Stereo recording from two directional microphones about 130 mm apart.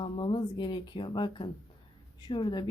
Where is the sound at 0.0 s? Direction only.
40° left (ahead or behind).